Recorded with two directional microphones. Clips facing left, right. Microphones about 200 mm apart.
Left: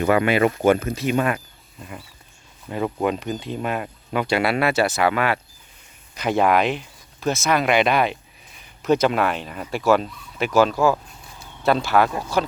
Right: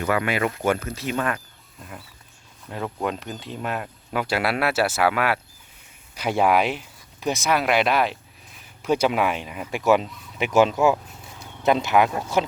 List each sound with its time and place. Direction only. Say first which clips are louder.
0.0 s speech: left 5 dB; 25° left (ahead or behind)
1.8 s speech: left 3 dB; centre (ahead or behind); by 12.5 s 20° right (ahead or behind)